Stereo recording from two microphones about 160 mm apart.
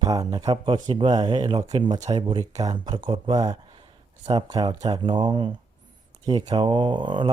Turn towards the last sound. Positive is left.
turn(degrees=-30)  # may be behind; listen again after turning